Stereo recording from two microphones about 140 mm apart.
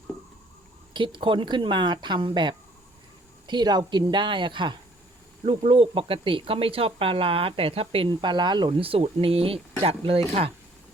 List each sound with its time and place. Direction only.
0.9 s speech: 35° right (ahead or behind)